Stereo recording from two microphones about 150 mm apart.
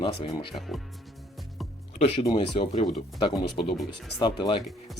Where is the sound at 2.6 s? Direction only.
35° left (ahead or behind).